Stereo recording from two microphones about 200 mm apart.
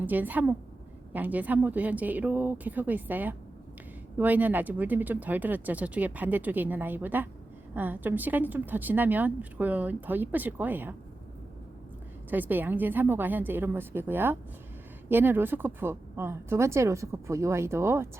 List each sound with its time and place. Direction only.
0.0 s a woman's voice: 10° right (ahead or behind)
12.3 s a woman's voice: 10° right (ahead or behind)